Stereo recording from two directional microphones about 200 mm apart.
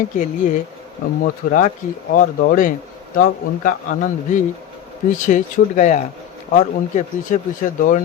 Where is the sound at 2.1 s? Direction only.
45° left (ahead or behind).